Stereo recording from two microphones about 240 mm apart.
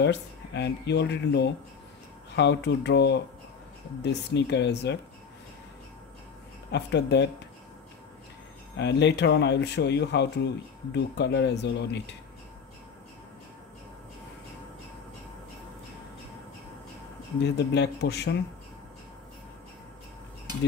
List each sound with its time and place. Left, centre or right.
0.0 s speech: left
6.7 s speech: left
8.7 s speech: left
17.4 s speech: left